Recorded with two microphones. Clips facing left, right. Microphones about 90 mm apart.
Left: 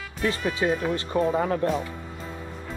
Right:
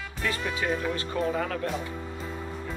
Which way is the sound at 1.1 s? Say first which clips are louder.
Left 6 dB; 30° left (ahead or behind).